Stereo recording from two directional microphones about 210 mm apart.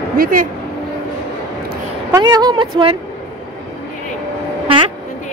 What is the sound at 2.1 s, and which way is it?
Speech, 20° right (ahead or behind).